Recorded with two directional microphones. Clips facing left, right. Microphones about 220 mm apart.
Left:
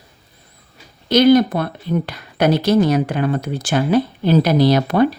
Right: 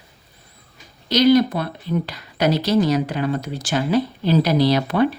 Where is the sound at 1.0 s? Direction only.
55° left (ahead or behind).